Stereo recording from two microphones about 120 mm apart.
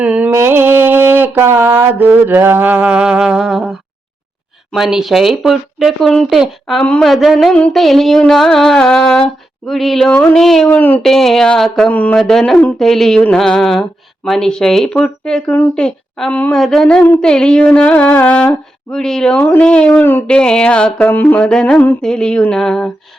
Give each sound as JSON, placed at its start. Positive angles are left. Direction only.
{"t": 0.0, "sound": "a sound", "side_deg": -10}
{"t": 4.7, "sound": "speech", "side_deg": -5}
{"t": 6.8, "sound": "speech", "side_deg": 10}
{"t": 7.1, "sound": "speech", "side_deg": 0}
{"t": 10.7, "sound": "speech", "side_deg": 15}
{"t": 11.0, "sound": "speech", "side_deg": 5}